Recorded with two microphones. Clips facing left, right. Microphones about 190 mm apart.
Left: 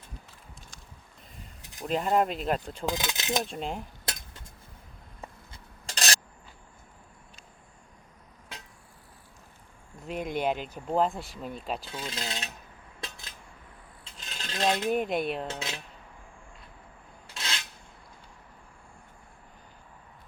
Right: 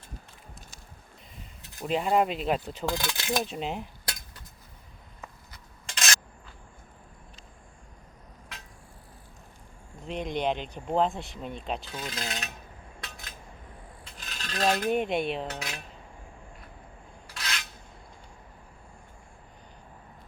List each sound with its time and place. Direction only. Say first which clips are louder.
1.6 s a sound: right 1 dB; 15° left (ahead or behind)
1.9 s speech: right 1 dB; centre (ahead or behind)
2.8 s speech: right 1 dB; 20° left (ahead or behind)
3.4 s speech: right 1 dB; 5° right (ahead or behind)
5.2 s rub: left 2 dB; 35° left (ahead or behind)
10.0 s speech: even; 5° left (ahead or behind)
11.9 s speech: even; 25° left (ahead or behind)
13.0 s a sound: left 3 dB; 25° left (ahead or behind)
14.8 s speech: right 1 dB; centre (ahead or behind)
15.4 s speech: left 1 dB; 25° left (ahead or behind)
17.2 s filing: even; 25° left (ahead or behind)